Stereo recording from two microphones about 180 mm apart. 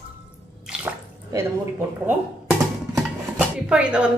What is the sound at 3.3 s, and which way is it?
Speech, 5° right (ahead or behind).